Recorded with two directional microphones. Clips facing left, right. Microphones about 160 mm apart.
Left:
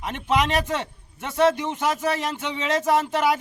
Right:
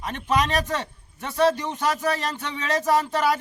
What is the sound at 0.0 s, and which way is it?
A man's voice, 20° left (ahead or behind).